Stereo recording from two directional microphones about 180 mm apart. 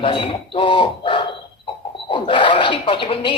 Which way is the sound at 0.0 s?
30° left (ahead or behind).